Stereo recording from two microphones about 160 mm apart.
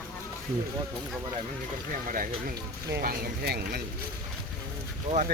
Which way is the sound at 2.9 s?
65° right (ahead or behind).